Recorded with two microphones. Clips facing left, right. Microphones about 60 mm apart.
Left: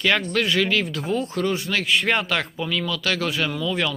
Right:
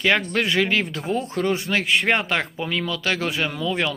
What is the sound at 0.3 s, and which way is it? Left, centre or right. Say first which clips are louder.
Speech: even; centre.